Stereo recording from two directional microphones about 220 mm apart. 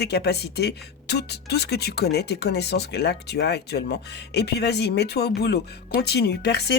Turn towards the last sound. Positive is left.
turn(degrees=50)  # may be behind; listen again after turning